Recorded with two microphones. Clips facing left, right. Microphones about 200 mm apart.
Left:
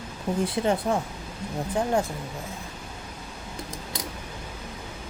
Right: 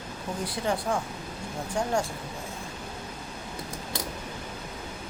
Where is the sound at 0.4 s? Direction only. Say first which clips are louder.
Left 3 dB; 25° left (ahead or behind).